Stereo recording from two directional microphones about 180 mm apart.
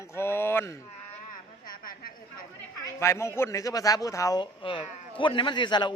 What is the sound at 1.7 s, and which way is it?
Chatter, 55° left (ahead or behind).